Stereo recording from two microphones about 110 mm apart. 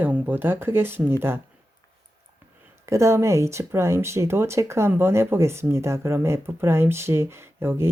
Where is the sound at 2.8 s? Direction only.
25° right (ahead or behind).